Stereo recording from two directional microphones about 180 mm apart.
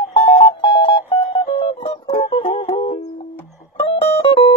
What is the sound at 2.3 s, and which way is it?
Music, 30° left (ahead or behind).